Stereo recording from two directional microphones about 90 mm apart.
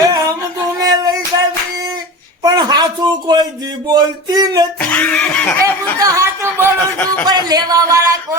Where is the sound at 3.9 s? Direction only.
45° right (ahead or behind).